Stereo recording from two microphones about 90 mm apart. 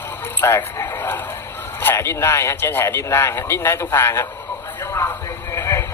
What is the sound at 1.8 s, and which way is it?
Speech, 30° left (ahead or behind).